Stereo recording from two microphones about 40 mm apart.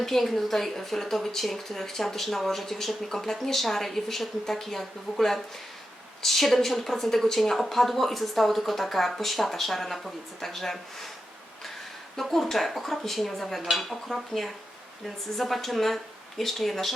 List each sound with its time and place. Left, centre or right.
0.0 s a woman's voice: centre
12.3 s a woman's voice: centre